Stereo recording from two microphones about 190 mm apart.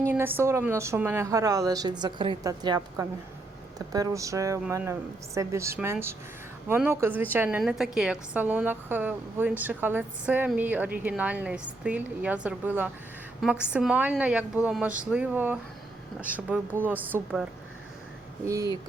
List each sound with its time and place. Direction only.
0.1 s a woman's voice: 10° right (ahead or behind)
18.4 s a woman's voice: 15° right (ahead or behind)